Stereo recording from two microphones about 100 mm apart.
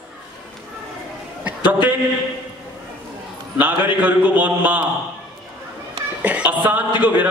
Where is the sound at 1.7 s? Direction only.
15° right (ahead or behind).